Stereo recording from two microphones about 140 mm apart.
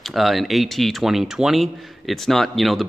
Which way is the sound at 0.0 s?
Centre (ahead or behind).